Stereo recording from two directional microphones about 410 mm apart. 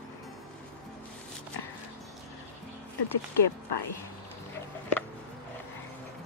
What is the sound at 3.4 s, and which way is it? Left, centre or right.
Speech, left.